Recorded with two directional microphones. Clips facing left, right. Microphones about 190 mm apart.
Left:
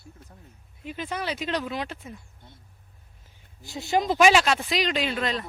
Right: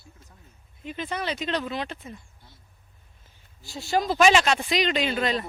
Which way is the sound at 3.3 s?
20° left (ahead or behind).